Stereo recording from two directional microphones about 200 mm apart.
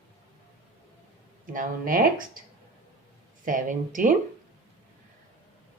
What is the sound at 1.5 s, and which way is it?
Speech, 45° right (ahead or behind).